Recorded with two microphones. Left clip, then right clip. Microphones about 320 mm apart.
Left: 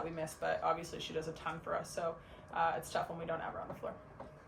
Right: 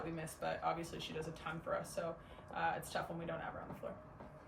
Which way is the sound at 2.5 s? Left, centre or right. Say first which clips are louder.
Left 5 dB; centre.